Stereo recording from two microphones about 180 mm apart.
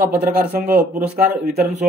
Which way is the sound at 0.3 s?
55° right (ahead or behind).